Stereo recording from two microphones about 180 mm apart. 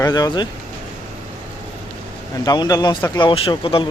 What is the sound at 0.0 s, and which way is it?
Speech, 20° left (ahead or behind).